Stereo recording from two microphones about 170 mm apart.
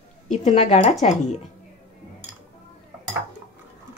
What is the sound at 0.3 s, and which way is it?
A woman's voice, 45° left (ahead or behind).